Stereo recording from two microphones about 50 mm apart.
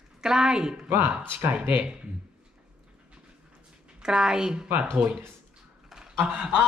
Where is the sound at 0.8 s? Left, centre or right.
Right.